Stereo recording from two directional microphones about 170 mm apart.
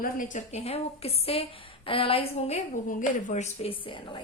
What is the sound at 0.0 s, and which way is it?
A woman's voice, 50° left (ahead or behind).